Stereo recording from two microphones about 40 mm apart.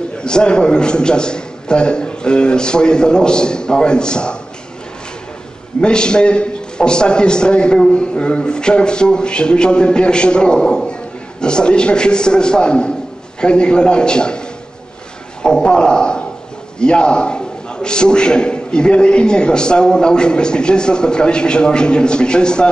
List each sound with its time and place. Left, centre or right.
0.2 s a man's voice: left
5.8 s a man's voice: left
15.4 s a man's voice: centre